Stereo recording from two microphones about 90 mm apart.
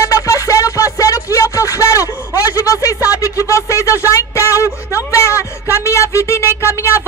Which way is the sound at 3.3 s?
35° left (ahead or behind).